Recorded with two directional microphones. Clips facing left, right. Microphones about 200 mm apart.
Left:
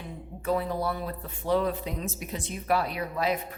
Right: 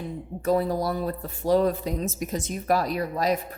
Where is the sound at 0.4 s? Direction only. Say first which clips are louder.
Right 4 dB; 40° right (ahead or behind).